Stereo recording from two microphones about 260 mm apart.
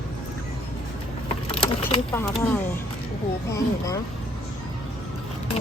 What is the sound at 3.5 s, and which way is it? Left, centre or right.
Speech, centre.